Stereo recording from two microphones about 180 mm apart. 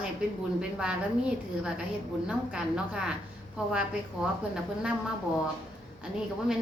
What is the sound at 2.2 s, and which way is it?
A woman's voice, 5° right (ahead or behind).